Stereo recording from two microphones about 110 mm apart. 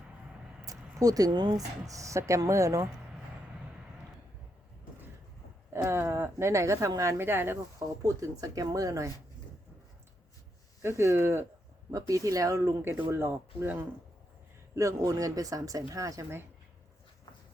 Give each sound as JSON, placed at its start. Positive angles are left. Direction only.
{"t": 0.6, "sound": "a sound", "side_deg": -30}
{"t": 1.9, "sound": "speech", "side_deg": -30}
{"t": 5.7, "sound": "speech", "side_deg": -25}
{"t": 10.8, "sound": "speech", "side_deg": -25}
{"t": 14.8, "sound": "speech", "side_deg": -30}